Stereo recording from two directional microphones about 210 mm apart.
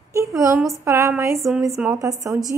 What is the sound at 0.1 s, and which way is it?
A woman's voice, 15° right (ahead or behind).